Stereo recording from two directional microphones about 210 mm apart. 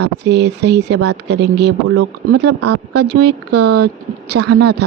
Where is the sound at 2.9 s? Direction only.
50° right (ahead or behind).